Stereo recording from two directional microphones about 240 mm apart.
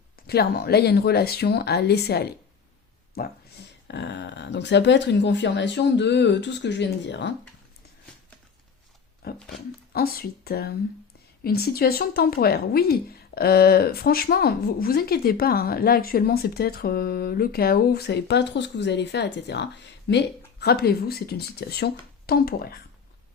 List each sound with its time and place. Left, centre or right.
0.3 s a woman's voice: left
9.2 s a woman's voice: left